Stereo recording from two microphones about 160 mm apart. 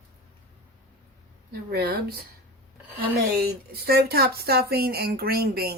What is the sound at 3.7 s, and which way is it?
Speech, 80° right.